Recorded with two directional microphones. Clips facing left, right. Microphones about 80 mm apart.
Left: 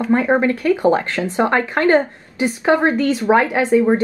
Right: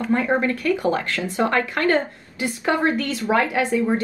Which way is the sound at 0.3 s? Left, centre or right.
Left.